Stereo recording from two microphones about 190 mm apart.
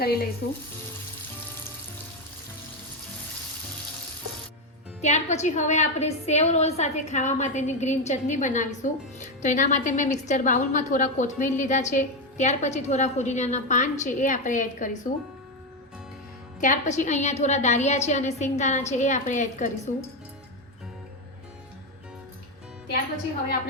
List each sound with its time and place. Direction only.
0.0 s frying: 55° left (ahead or behind)
4.9 s a woman's voice: 35° left (ahead or behind)
16.6 s a woman's voice: 40° left (ahead or behind)